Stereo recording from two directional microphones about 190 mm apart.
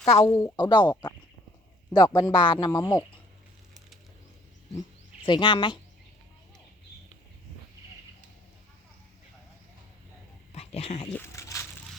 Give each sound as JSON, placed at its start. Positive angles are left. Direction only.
{"t": 0.2, "sound": "speech", "side_deg": 15}
{"t": 1.9, "sound": "speech", "side_deg": 20}
{"t": 5.2, "sound": "speech", "side_deg": 25}
{"t": 10.5, "sound": "dog", "side_deg": 30}
{"t": 11.1, "sound": "a sound", "side_deg": 15}